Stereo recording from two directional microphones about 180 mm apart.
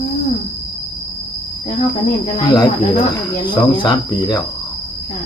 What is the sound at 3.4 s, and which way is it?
Speech, 25° left (ahead or behind).